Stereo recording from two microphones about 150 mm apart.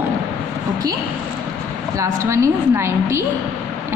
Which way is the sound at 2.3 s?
20° right (ahead or behind).